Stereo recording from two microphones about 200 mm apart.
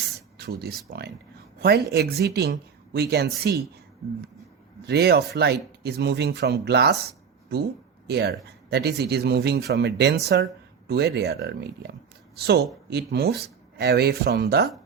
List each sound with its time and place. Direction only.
0.3 s speech: 55° right (ahead or behind)
4.9 s speech: 55° right (ahead or behind)
8.0 s speech: 55° right (ahead or behind)